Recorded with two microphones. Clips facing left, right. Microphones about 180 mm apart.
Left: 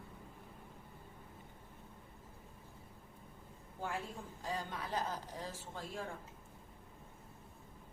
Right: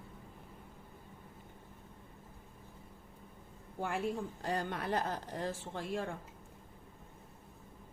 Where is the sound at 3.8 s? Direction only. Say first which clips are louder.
Right 7 dB; 70° right (ahead or behind).